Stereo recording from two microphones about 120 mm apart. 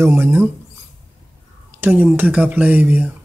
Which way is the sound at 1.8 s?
15° right (ahead or behind).